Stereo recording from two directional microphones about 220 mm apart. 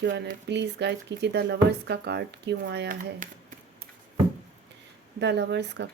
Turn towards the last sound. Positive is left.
turn(degrees=-50)  # may be behind; listen again after turning